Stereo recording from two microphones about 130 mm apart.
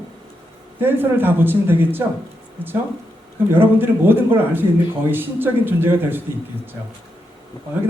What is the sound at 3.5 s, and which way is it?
A man's voice, 15° right (ahead or behind).